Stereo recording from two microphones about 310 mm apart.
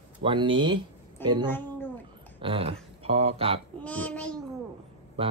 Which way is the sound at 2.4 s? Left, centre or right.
Centre.